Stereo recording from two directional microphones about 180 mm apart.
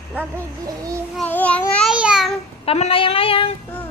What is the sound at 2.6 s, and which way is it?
Speech, 35° left (ahead or behind).